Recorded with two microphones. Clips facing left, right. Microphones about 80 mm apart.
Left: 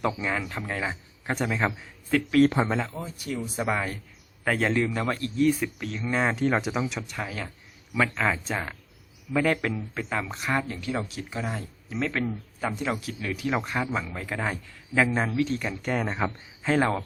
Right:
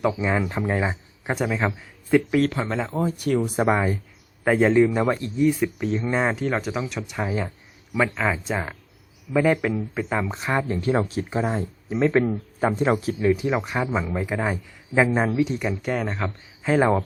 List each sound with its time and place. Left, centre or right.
0.1 s a man's voice: centre
2.0 s a man's voice: centre
2.9 s speech: right
3.7 s a man's voice: right
5.9 s a man's voice: right
6.1 s speech: centre
7.1 s a man's voice: centre
10.1 s a man's voice: centre
10.8 s speech: right
12.5 s speech: right; by 16.9 s centre